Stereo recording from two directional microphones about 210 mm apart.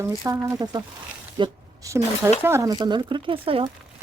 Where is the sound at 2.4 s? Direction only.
15° right (ahead or behind).